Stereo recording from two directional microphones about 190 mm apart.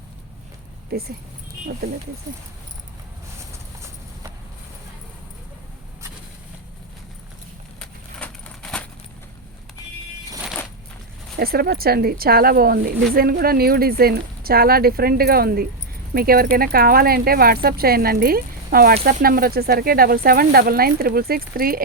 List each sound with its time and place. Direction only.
0.9 s speech: 55° right (ahead or behind)
8.2 s a sound: 5° left (ahead or behind)
11.3 s speech: 55° right (ahead or behind)